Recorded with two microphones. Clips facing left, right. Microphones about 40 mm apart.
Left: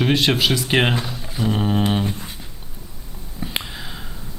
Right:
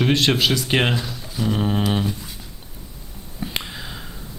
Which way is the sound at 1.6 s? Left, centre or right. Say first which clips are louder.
Left 2 dB; centre.